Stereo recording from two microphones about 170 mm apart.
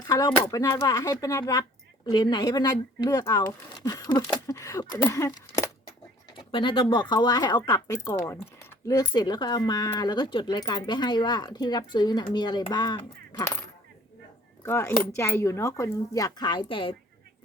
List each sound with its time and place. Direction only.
0.1 s speech: 25° left (ahead or behind)
6.5 s speech: 30° left (ahead or behind)
14.6 s speech: 15° left (ahead or behind); by 16.9 s 30° left (ahead or behind)